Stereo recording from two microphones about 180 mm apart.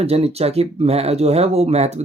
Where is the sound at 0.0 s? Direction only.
35° right (ahead or behind).